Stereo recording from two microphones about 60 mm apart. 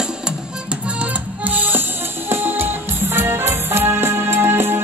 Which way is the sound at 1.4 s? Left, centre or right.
Right.